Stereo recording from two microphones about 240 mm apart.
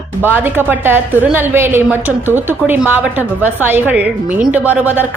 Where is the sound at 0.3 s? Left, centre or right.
Centre.